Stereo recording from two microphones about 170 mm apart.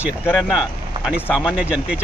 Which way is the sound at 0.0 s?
5° right (ahead or behind).